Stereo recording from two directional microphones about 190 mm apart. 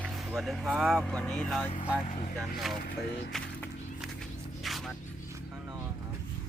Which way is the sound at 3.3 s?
Centre (ahead or behind).